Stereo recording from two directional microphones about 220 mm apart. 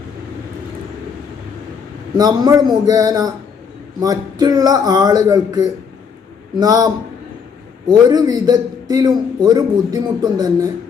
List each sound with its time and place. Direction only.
2.1 s a man's voice: 15° right (ahead or behind)